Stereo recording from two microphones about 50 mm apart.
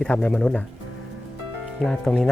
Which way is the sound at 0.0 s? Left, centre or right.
Left.